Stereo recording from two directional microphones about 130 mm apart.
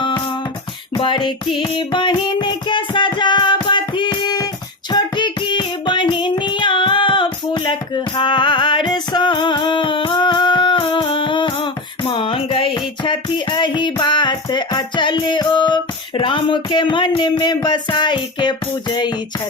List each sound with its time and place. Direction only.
0.9 s music: 40° left (ahead or behind)
4.9 s child singing: 35° left (ahead or behind)